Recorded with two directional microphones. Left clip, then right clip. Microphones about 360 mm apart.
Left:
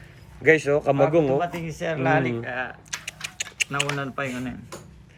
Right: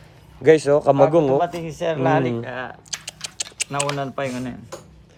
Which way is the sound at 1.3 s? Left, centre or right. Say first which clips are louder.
Right 4 dB; right.